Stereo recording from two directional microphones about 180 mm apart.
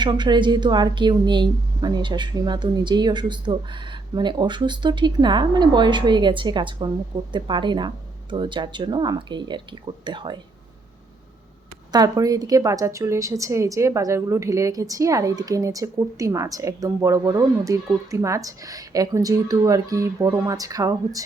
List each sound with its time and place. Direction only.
0.0 s a woman's voice: 25° right (ahead or behind)
11.9 s a woman's voice: 20° right (ahead or behind)